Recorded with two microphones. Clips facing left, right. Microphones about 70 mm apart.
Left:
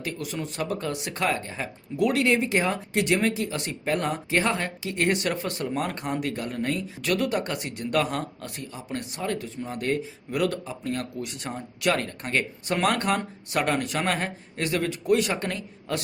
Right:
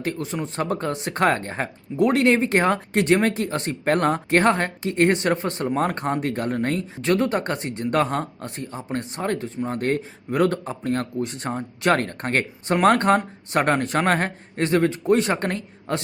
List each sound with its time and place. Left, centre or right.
0.0 s speech: right